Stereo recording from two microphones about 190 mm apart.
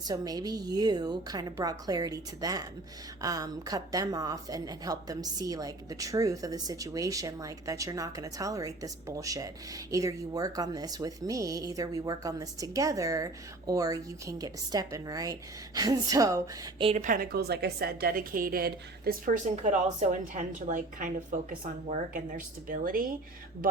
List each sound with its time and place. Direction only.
0.0 s a woman's voice: 20° right (ahead or behind)
17.0 s a woman's voice: 45° right (ahead or behind)